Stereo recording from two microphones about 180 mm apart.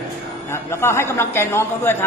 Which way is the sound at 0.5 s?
15° left (ahead or behind).